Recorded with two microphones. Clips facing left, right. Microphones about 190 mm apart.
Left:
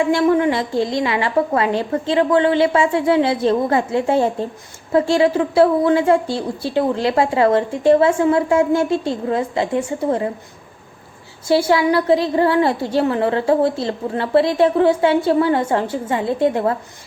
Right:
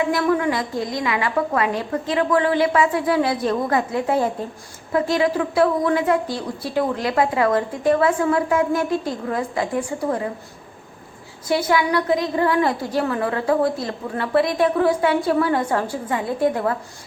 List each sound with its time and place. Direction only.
0.0 s a woman's voice: 25° left (ahead or behind)
11.4 s a woman's voice: 30° left (ahead or behind)